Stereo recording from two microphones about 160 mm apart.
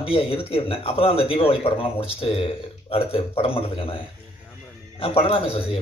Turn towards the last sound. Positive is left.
turn(degrees=35)  # may be behind; listen again after turning